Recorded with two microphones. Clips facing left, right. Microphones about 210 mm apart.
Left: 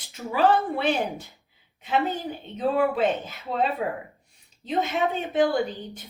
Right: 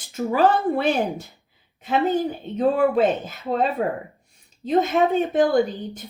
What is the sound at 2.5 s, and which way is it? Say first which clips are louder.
A woman's voice: right 4 dB; 45° right (ahead or behind).